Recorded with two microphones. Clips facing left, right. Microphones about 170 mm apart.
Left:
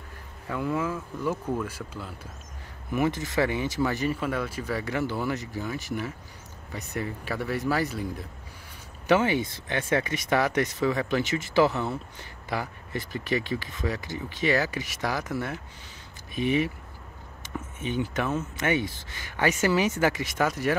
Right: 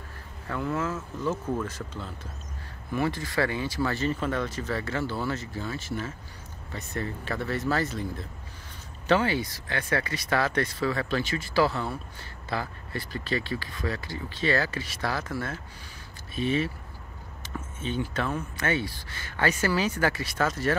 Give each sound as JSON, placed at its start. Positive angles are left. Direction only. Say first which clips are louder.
{"t": 0.5, "sound": "speech", "louder": "left 1 dB", "side_deg": 15}
{"t": 17.7, "sound": "speech", "louder": "left 1 dB", "side_deg": 15}